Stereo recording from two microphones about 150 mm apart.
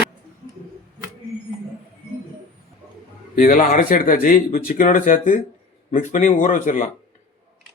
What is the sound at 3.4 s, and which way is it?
Speech, 65° left (ahead or behind).